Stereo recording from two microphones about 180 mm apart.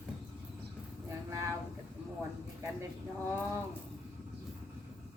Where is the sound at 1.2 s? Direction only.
15° right (ahead or behind).